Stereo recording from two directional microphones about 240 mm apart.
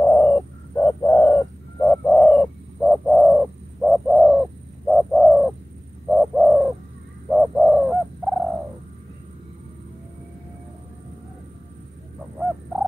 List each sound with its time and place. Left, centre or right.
0.0 s bird: centre